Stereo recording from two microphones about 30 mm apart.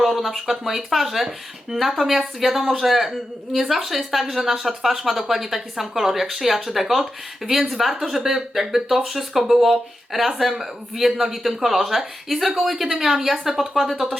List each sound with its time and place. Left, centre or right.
0.1 s a woman's voice: centre
4.4 s speech: right
4.6 s a woman's voice: centre